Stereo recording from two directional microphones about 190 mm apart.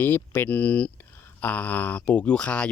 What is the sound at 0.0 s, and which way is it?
Speech, 10° left (ahead or behind).